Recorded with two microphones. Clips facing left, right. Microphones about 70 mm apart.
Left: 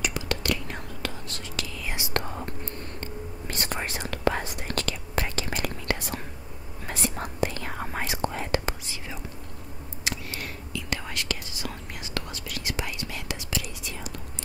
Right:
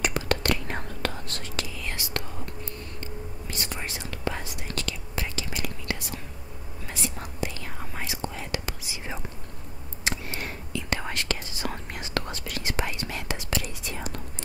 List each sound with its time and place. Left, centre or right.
0.0 s whispering: right
1.9 s whispering: left
2.1 s whispering: left
10.0 s whispering: right